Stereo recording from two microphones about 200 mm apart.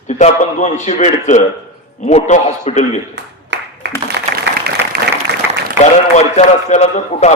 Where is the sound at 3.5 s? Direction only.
65° right (ahead or behind).